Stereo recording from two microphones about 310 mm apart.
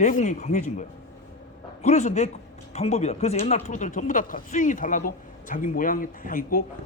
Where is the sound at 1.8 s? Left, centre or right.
Left.